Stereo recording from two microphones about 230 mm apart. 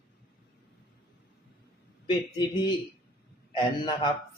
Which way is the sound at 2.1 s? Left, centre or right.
Centre.